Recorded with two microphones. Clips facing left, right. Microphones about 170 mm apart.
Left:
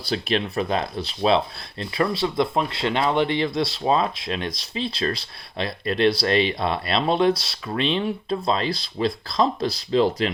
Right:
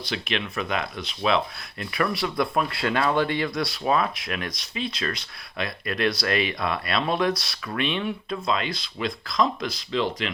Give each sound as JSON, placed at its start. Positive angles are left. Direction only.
{"t": 0.0, "sound": "speech", "side_deg": 35}